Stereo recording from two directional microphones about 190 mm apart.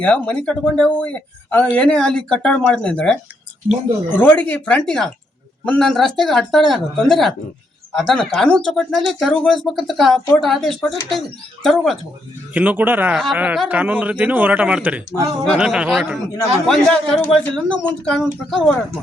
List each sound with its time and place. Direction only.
0.0 s speech: 5° left (ahead or behind)
4.1 s speech: 10° left (ahead or behind)